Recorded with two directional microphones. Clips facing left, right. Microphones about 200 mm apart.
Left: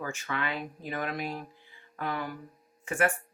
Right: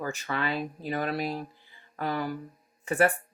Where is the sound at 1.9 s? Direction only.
35° right (ahead or behind).